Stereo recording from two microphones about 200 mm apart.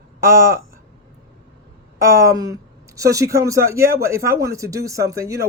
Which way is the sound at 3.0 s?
15° right (ahead or behind).